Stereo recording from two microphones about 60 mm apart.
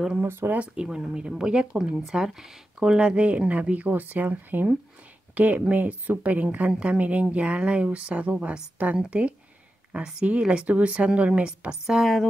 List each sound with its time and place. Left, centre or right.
0.2 s speech: right
0.5 s speech: centre